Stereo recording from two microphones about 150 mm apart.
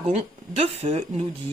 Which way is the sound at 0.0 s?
45° right (ahead or behind).